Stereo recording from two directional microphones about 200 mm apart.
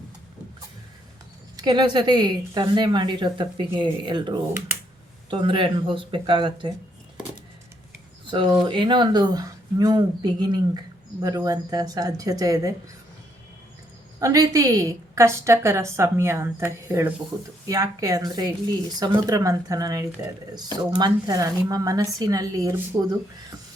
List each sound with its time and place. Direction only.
1.5 s a woman's voice: 20° right (ahead or behind)
8.3 s a woman's voice: 25° right (ahead or behind)
14.2 s a woman's voice: 15° right (ahead or behind)